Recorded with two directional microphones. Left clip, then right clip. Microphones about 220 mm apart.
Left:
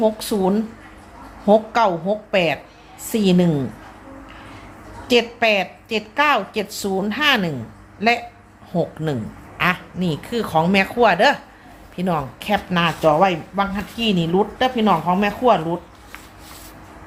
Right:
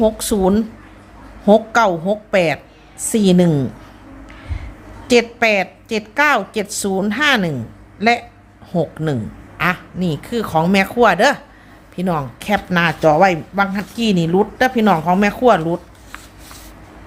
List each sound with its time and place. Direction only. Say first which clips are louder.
0.0 s a woman's voice: right 3 dB; 30° right (ahead or behind)
5.0 s a woman's voice: right 3 dB; 25° right (ahead or behind)